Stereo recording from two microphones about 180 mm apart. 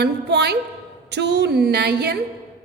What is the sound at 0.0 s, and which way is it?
A woman's voice, 65° right (ahead or behind).